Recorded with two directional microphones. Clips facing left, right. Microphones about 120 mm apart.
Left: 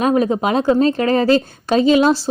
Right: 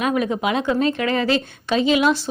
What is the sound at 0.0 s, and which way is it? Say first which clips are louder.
A woman's voice: left 5 dB; 35° left (ahead or behind).